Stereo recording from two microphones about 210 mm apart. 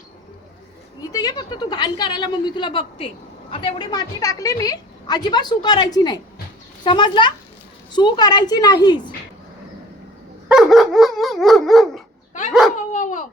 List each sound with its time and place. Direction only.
1.1 s a woman's voice: 15° left (ahead or behind)
10.5 s dog: centre (ahead or behind)
12.9 s a sound: 35° left (ahead or behind)